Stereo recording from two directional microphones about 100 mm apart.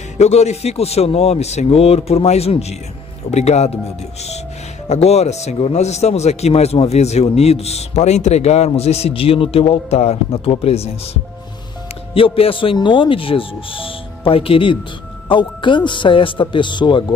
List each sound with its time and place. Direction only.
0.2 s speech: 90° left
4.8 s speech: 90° left
12.1 s speech: 65° left (ahead or behind)
12.7 s speech: 55° left (ahead or behind)